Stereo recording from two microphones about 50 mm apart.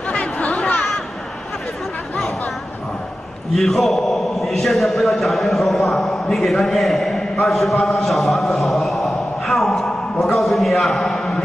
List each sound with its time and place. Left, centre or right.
0.1 s chatter: left
3.5 s a man's voice: centre